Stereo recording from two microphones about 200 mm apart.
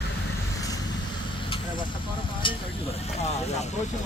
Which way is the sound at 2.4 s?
25° left (ahead or behind).